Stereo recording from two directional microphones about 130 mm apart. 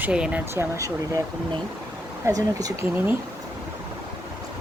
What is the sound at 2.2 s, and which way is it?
Speech, 30° right (ahead or behind).